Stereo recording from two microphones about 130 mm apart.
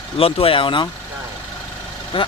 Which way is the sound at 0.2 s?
45° left (ahead or behind).